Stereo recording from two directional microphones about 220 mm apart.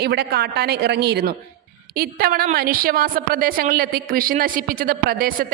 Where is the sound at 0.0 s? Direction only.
45° right (ahead or behind).